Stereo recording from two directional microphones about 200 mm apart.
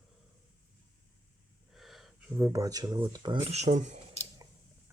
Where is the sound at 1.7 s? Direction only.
Centre (ahead or behind); by 4.2 s 35° right (ahead or behind).